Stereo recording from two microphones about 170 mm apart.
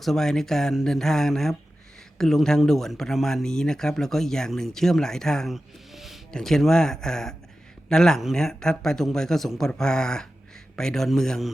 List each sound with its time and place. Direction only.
0.0 s speech: centre (ahead or behind)